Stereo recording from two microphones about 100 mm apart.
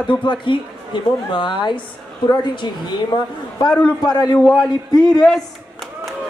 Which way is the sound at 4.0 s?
45° left (ahead or behind).